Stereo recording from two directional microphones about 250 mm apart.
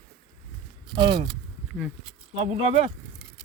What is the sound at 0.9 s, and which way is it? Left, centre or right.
Speech, centre.